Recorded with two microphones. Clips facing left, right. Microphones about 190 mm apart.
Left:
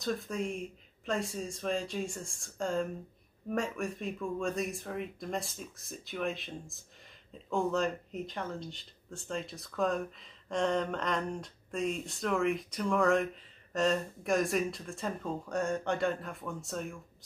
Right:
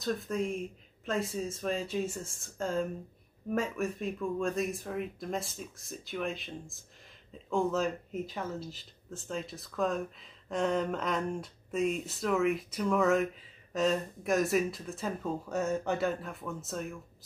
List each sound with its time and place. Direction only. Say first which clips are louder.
0.0 s speech: right 2 dB; centre (ahead or behind)